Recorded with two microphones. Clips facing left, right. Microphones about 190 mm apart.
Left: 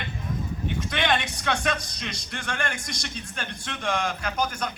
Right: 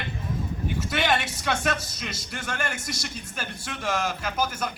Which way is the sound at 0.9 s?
5° right (ahead or behind).